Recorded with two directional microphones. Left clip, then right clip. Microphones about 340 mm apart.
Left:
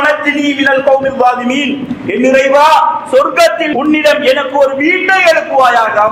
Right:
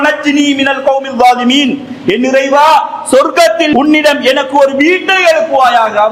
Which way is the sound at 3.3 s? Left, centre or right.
Right.